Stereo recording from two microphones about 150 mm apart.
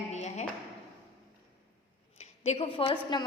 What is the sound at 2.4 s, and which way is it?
Speech, 40° left (ahead or behind).